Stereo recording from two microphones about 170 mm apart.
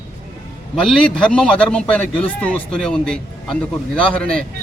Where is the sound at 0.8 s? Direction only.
5° left (ahead or behind).